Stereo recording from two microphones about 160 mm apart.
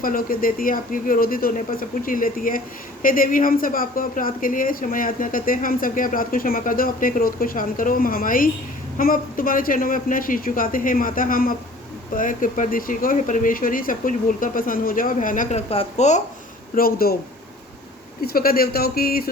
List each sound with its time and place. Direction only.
0.0 s a woman's voice: 65° left (ahead or behind); by 16.2 s 45° left (ahead or behind)
16.7 s speech: 65° left (ahead or behind)
18.2 s speech: 70° left (ahead or behind)